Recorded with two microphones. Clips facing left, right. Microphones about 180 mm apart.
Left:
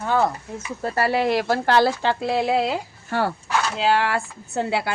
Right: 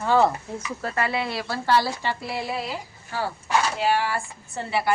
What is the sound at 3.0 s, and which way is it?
Speech, 65° left (ahead or behind).